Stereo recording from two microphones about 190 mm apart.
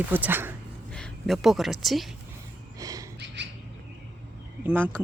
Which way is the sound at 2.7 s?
20° right (ahead or behind).